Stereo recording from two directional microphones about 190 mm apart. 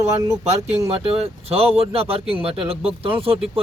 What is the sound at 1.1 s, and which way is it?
Speech, 30° right (ahead or behind).